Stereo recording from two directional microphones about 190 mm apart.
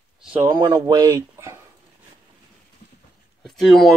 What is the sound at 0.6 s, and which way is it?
Speech, 20° right (ahead or behind).